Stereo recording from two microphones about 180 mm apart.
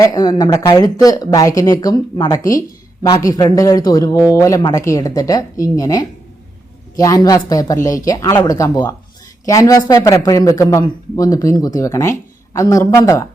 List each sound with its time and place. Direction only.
0.0 s speech: 20° left (ahead or behind)